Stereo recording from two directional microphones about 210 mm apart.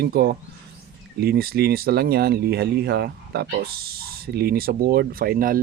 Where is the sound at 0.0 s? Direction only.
50° right (ahead or behind).